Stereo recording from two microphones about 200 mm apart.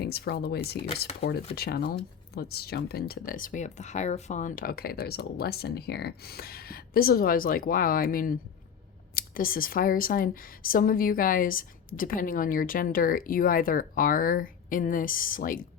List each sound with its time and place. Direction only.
0.0 s speech: 55° left (ahead or behind)
1.2 s speech: 30° left (ahead or behind)
1.5 s speech: 50° left (ahead or behind)